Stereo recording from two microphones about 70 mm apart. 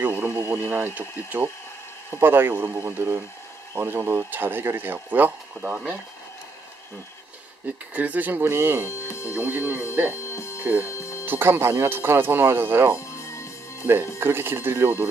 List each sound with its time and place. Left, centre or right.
0.0 s a sound: right
0.3 s a sound: right
0.7 s speech: right
7.9 s speech: right
8.8 s speech: left
9.4 s speech: right
10.1 s music: left
11.2 s speech: right
13.0 s music: left
14.2 s speech: right